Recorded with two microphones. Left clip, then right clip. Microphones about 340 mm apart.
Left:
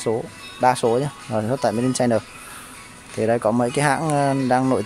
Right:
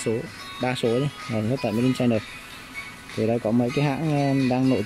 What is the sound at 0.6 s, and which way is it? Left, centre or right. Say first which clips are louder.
Speech: left 6 dB; left.